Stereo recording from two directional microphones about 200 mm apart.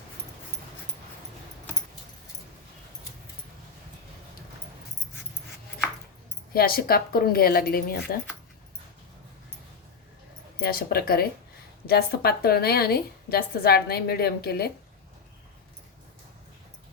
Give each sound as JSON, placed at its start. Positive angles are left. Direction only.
{"t": 6.5, "sound": "a woman's voice", "side_deg": 50}
{"t": 10.6, "sound": "a woman's voice", "side_deg": 50}